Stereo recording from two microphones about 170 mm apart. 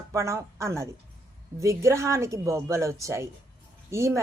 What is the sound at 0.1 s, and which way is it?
A woman's voice, 20° right (ahead or behind).